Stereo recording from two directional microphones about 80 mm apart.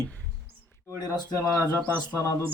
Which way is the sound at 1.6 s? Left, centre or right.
Left.